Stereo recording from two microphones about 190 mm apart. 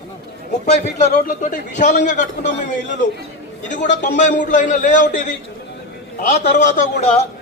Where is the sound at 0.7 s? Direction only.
40° left (ahead or behind).